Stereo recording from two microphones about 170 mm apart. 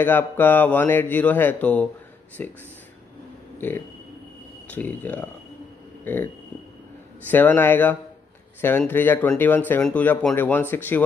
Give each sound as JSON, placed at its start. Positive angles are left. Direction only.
{"t": 0.0, "sound": "speech", "side_deg": 10}
{"t": 3.5, "sound": "a sound", "side_deg": 10}
{"t": 4.6, "sound": "speech", "side_deg": 10}
{"t": 7.2, "sound": "speech", "side_deg": 10}